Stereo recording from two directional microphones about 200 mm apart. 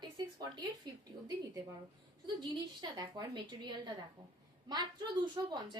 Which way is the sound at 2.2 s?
20° right (ahead or behind).